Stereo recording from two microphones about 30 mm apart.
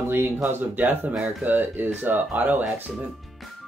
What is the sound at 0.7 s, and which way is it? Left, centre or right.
Speech, right.